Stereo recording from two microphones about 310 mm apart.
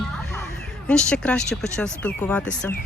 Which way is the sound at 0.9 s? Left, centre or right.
Centre.